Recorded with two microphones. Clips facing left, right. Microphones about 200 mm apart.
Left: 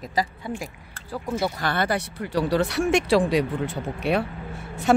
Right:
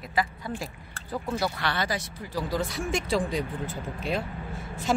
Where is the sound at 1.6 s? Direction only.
55° left (ahead or behind).